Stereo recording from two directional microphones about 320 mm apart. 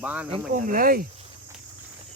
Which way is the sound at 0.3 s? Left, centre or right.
Right.